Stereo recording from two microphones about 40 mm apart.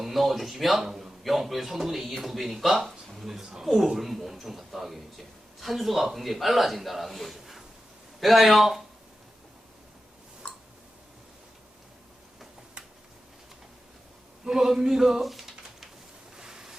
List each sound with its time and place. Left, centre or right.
0.0 s speech: centre
10.4 s tick-tock: left
14.4 s a sound: centre